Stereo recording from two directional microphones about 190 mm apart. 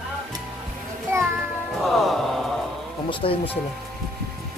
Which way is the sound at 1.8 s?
Centre (ahead or behind).